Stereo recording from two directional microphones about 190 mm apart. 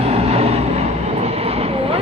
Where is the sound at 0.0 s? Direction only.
35° right (ahead or behind).